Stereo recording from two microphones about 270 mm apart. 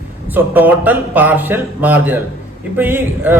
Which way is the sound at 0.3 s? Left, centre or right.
Centre.